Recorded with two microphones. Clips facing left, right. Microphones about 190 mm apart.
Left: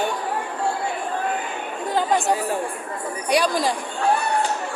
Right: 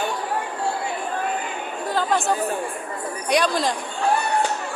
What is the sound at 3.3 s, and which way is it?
Speech, 10° left (ahead or behind).